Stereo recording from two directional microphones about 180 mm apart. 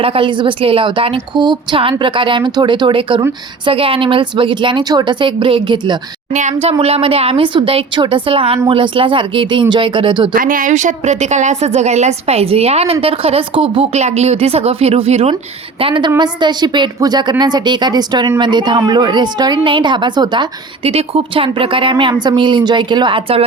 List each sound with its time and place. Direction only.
0.0 s a woman's voice: 30° right (ahead or behind)
6.3 s a woman's voice: 40° right (ahead or behind)
10.3 s a woman's voice: 50° right (ahead or behind); by 23.5 s 30° right (ahead or behind)